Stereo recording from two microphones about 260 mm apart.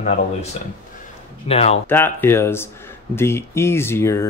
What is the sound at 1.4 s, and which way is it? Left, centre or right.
Speech, left.